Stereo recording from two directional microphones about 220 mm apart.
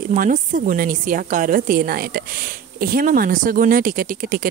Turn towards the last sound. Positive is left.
turn(degrees=-40)  # may be behind; listen again after turning